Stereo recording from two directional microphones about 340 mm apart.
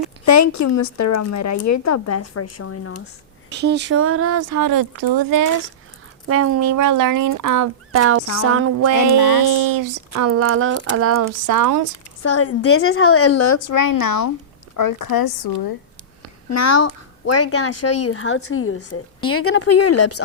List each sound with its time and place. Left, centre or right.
0.3 s speech: left
3.5 s speech: right
6.2 s speech: right
7.9 s speech: right
9.1 s speech: left
9.4 s speech: right
12.2 s speech: left
16.5 s speech: left